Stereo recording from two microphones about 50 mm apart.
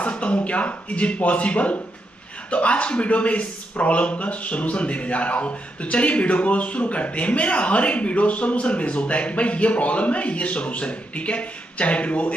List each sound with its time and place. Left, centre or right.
0.0 s a man's voice: left